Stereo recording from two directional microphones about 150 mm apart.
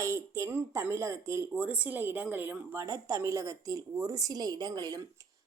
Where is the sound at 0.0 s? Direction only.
20° right (ahead or behind).